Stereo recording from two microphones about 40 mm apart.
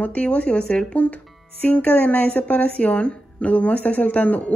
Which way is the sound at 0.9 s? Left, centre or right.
Left.